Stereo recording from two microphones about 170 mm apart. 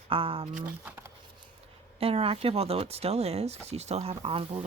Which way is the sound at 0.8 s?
15° right (ahead or behind).